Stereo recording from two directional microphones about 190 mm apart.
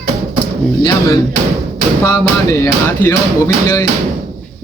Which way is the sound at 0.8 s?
20° left (ahead or behind).